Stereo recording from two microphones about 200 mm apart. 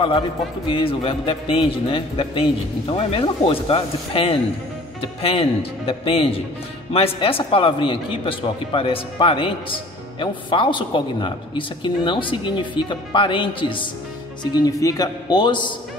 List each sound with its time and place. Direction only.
0.7 s a man's voice: 25° left (ahead or behind)